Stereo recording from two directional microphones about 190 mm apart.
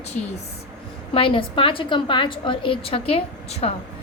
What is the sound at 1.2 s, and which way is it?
A woman's voice, 30° left (ahead or behind).